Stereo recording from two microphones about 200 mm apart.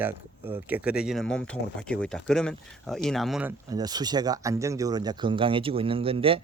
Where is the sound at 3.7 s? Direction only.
20° right (ahead or behind).